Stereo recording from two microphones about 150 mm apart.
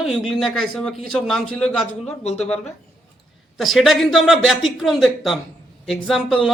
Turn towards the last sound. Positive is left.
turn(degrees=0)  # may be behind; listen again after turning